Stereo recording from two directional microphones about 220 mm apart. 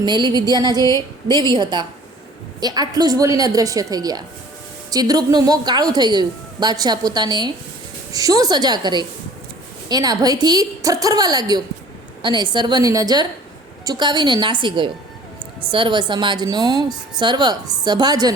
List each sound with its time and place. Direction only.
0.0 s a woman's voice: 20° right (ahead or behind)